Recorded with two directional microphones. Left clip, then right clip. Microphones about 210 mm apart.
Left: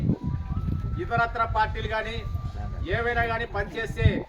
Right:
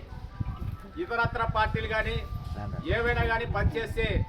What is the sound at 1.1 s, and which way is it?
Speech, centre (ahead or behind).